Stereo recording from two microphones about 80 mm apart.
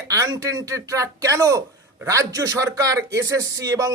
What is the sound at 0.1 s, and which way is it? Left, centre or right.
Speech, right.